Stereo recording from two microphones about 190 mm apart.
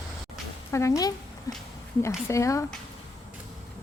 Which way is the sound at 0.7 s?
15° left (ahead or behind).